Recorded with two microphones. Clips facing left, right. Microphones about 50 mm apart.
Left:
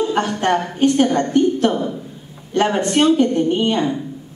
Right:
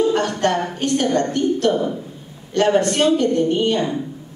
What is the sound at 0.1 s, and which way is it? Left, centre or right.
A woman's voice, centre.